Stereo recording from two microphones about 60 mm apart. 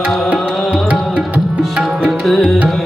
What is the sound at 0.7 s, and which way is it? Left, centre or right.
Music, right.